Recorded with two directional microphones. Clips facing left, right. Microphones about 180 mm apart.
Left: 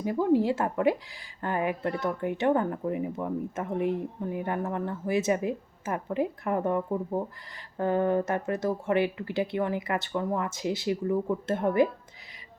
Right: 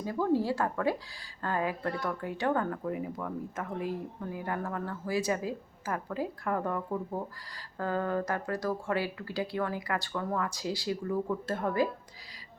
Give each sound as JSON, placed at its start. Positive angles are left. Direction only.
{"t": 0.0, "sound": "speech", "side_deg": 20}